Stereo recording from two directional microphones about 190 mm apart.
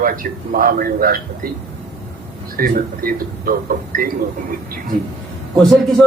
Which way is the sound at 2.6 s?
50° right (ahead or behind).